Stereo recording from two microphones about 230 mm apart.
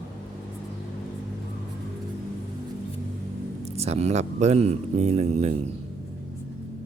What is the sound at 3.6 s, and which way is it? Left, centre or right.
Speech, right.